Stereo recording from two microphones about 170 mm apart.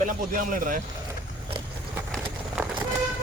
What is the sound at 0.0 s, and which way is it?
Speech, 50° right (ahead or behind).